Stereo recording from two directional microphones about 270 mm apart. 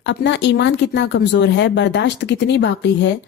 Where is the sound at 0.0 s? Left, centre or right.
Left.